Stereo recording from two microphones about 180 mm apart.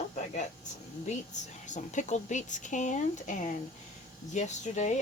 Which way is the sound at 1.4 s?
40° left (ahead or behind).